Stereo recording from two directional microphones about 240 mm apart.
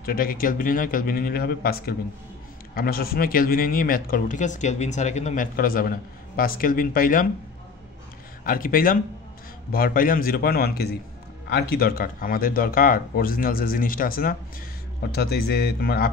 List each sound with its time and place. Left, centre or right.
0.0 s speech: left
8.5 s speech: left